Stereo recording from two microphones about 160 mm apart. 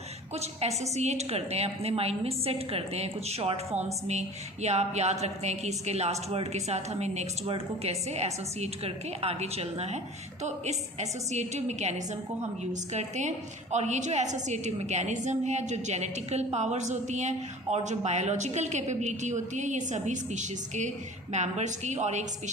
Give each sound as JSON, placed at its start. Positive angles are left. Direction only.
{"t": 0.6, "sound": "a woman's voice", "side_deg": -40}